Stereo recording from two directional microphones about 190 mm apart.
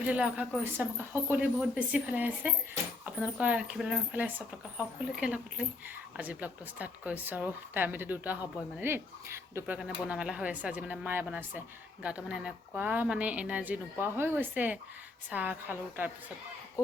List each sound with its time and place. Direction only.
0.0 s a woman's voice: 5° right (ahead or behind)